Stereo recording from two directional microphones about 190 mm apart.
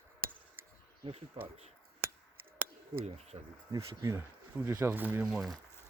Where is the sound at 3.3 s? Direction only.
25° right (ahead or behind).